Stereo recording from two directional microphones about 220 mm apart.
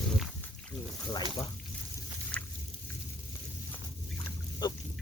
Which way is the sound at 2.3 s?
5° left (ahead or behind).